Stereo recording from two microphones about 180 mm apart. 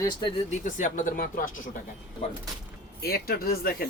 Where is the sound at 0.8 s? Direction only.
45° left (ahead or behind).